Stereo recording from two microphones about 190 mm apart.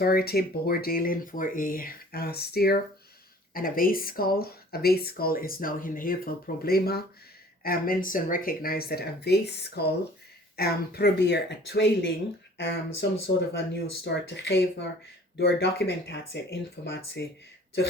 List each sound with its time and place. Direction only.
0.0 s speech: 55° left (ahead or behind)